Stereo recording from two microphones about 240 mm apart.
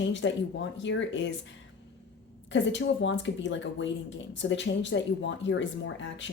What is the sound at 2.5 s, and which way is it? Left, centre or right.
Speech, left.